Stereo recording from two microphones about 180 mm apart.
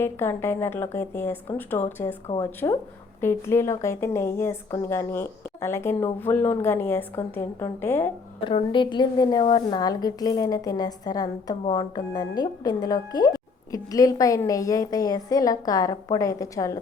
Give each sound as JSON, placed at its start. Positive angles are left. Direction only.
{"t": 0.0, "sound": "speech", "side_deg": 15}
{"t": 8.4, "sound": "a woman's voice", "side_deg": 30}